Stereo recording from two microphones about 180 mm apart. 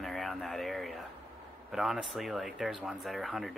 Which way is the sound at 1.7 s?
Centre (ahead or behind).